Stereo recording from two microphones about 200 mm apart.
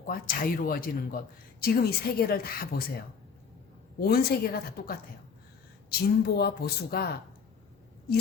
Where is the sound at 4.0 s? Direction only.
50° left (ahead or behind).